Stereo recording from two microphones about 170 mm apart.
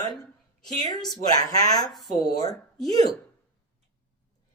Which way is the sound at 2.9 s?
20° left (ahead or behind).